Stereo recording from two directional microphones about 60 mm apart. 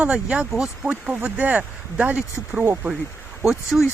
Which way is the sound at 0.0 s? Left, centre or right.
Centre.